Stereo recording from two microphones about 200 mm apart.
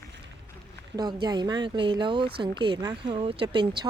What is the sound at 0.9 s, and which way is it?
Speech, 20° right (ahead or behind).